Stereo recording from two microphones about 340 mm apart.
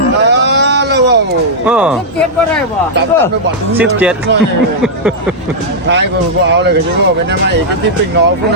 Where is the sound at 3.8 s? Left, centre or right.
Centre.